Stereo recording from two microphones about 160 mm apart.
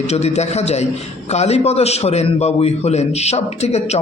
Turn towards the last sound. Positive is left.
turn(degrees=40)  # may be behind; listen again after turning